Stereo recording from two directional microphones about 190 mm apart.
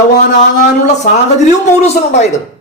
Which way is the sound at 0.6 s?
40° left (ahead or behind).